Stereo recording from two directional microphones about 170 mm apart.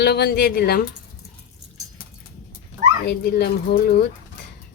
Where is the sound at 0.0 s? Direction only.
70° left (ahead or behind).